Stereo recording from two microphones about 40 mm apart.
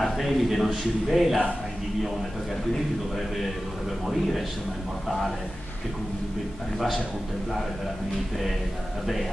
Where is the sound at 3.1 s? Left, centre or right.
Centre.